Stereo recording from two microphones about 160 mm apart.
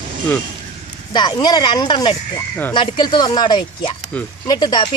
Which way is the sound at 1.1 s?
30° left (ahead or behind).